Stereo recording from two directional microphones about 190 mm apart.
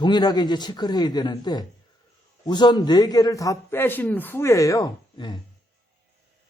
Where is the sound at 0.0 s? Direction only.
20° left (ahead or behind).